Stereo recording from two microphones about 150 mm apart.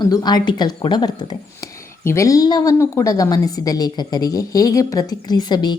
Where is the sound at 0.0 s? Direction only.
30° left (ahead or behind).